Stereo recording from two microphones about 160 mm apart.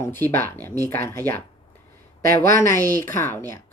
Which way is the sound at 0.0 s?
15° left (ahead or behind).